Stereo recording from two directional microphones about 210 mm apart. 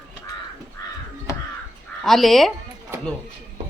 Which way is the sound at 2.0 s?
Centre (ahead or behind).